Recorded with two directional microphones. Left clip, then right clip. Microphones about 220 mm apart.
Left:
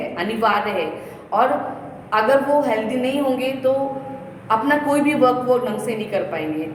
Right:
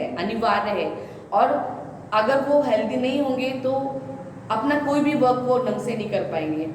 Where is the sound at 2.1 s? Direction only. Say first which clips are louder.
Left 3 dB; 10° left (ahead or behind).